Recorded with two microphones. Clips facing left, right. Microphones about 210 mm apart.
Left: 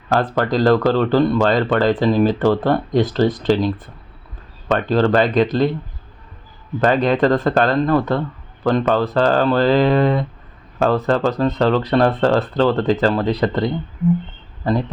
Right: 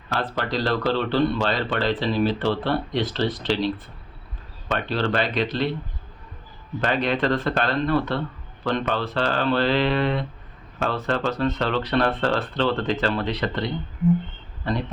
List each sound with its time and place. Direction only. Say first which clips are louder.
0.1 s speech: left 8 dB; 45° left (ahead or behind)
4.7 s speech: left 8 dB; 45° left (ahead or behind)
6.8 s speech: left 7 dB; 45° left (ahead or behind)